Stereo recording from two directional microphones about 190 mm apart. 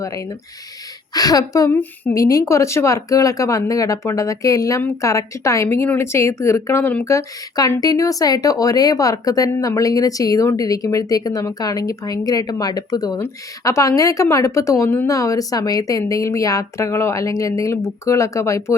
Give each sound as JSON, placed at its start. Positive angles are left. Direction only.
{"t": 0.0, "sound": "a woman's voice", "side_deg": 15}